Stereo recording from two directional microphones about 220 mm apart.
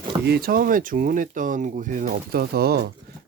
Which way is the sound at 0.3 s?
45° right (ahead or behind).